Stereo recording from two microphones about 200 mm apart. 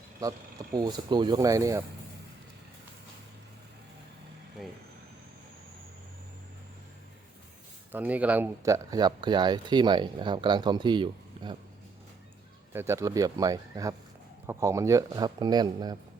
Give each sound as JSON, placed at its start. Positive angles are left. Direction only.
{"t": 0.2, "sound": "speech", "side_deg": -20}
{"t": 4.6, "sound": "speech", "side_deg": 0}
{"t": 7.9, "sound": "speech", "side_deg": -10}
{"t": 12.7, "sound": "speech", "side_deg": -10}